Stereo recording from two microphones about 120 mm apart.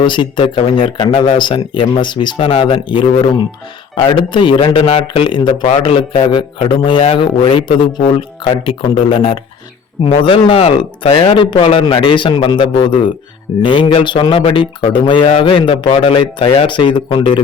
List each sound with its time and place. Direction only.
0.0 s a man's voice: 45° left (ahead or behind)